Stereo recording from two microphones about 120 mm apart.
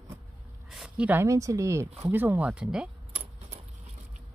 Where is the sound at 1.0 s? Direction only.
20° right (ahead or behind); by 2.9 s 5° right (ahead or behind).